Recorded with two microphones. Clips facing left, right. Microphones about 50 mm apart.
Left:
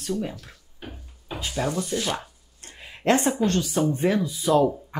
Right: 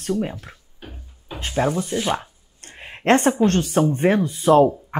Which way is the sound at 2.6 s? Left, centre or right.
Right.